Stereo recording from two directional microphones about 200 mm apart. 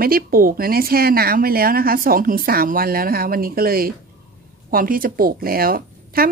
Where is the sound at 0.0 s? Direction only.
45° right (ahead or behind).